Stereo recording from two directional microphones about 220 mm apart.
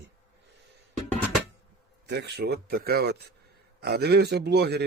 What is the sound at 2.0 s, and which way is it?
Speech, 50° right (ahead or behind).